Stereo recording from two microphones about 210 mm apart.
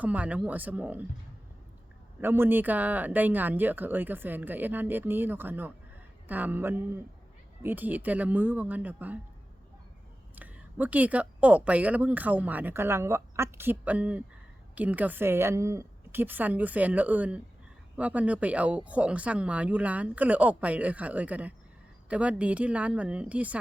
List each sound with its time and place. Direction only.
0.0 s speech: 5° right (ahead or behind)
2.2 s speech: 10° right (ahead or behind)
10.3 s speech: 10° right (ahead or behind)